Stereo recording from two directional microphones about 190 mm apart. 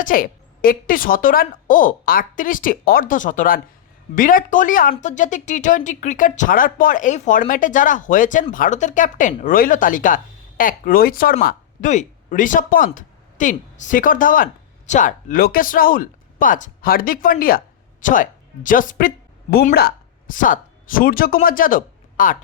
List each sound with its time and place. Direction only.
0.0 s speech: 45° left (ahead or behind)